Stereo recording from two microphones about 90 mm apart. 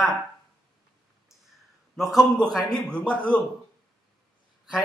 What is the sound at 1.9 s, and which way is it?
Speech, centre (ahead or behind).